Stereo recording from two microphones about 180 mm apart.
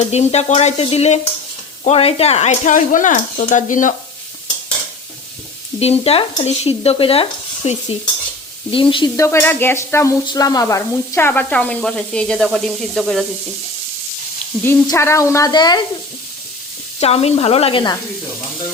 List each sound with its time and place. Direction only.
0.0 s stir: 35° left (ahead or behind)
1.8 s speech: 35° left (ahead or behind)
5.8 s stir: 35° left (ahead or behind)
8.7 s speech: 30° left (ahead or behind)
9.1 s speech: 15° left (ahead or behind)
12.5 s sizzle: centre (ahead or behind)
14.6 s speech: 15° left (ahead or behind)
17.0 s stir: 35° left (ahead or behind)